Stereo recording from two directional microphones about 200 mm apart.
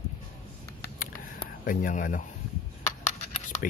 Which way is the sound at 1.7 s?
40° left (ahead or behind).